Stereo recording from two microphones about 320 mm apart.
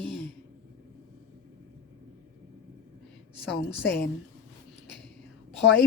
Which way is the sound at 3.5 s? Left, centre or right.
Left.